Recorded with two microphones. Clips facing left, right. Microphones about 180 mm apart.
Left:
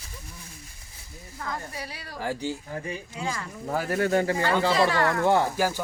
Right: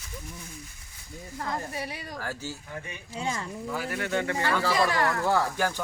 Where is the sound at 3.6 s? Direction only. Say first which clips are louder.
Left 7 dB; 45° left (ahead or behind); by 5.5 s 25° left (ahead or behind).